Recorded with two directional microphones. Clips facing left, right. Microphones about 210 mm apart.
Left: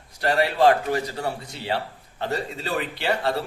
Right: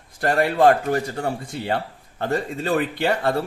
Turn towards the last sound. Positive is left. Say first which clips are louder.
# right 3 dB
turn(degrees=-50)  # may be behind; listen again after turning